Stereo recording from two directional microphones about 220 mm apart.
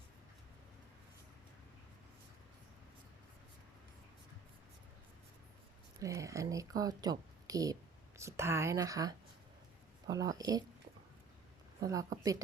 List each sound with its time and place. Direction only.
6.0 s speech: 15° right (ahead or behind)
11.8 s speech: 15° right (ahead or behind)